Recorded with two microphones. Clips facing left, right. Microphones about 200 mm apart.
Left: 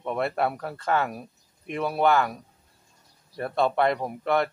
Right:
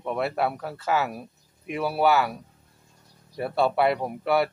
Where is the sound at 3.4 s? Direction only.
5° right (ahead or behind).